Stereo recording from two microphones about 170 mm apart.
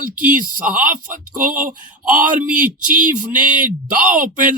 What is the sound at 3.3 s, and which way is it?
Speech, 50° right (ahead or behind).